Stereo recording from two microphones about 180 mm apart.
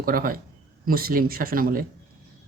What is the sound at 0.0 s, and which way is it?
Speech, 55° right (ahead or behind).